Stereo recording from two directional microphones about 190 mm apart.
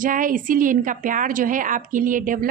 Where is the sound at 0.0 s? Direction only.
45° right (ahead or behind).